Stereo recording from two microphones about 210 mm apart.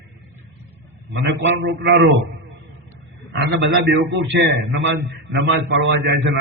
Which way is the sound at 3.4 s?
60° right (ahead or behind).